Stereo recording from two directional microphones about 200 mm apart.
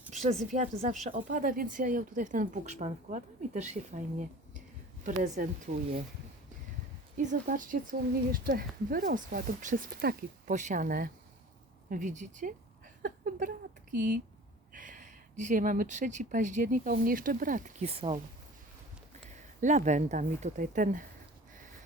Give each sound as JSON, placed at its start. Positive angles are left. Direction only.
{"t": 0.1, "sound": "a sound", "side_deg": -35}
{"t": 0.4, "sound": "speech", "side_deg": -35}
{"t": 7.2, "sound": "speech", "side_deg": -40}
{"t": 14.7, "sound": "speech", "side_deg": -40}
{"t": 19.3, "sound": "speech", "side_deg": -35}